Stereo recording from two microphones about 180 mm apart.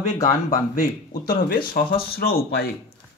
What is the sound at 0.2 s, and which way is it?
Speech, 50° left (ahead or behind).